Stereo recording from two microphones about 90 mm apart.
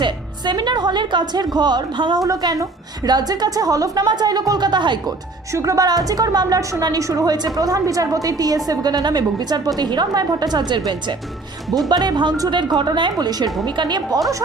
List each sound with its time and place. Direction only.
0.0 s a woman's voice: 55° right (ahead or behind)
2.2 s a woman's voice: 40° right (ahead or behind)
5.5 s a woman's voice: 35° right (ahead or behind); by 14.2 s 55° right (ahead or behind)